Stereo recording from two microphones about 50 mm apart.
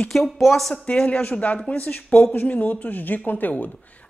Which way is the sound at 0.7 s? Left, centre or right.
Left.